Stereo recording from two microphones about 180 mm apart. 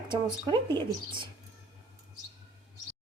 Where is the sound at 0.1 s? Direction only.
25° right (ahead or behind).